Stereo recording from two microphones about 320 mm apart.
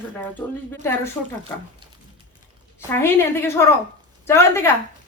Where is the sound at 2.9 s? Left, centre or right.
Centre.